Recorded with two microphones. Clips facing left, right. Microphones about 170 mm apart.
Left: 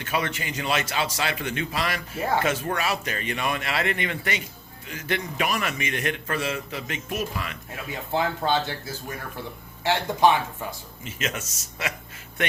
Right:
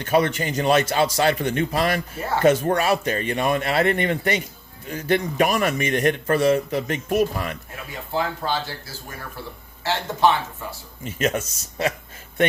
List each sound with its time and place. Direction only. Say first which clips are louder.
0.0 s a man's voice: right 8 dB; 35° right (ahead or behind)
8.1 s speech: left 1 dB; 20° left (ahead or behind)
11.0 s a man's voice: right 8 dB; 35° right (ahead or behind)